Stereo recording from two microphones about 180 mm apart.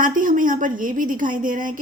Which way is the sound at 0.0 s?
50° right (ahead or behind).